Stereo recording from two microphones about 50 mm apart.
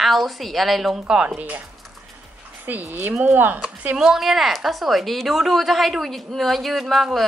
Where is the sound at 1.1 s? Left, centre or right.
Centre.